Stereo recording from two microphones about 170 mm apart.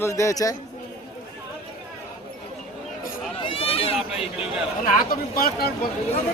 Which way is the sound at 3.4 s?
35° left (ahead or behind).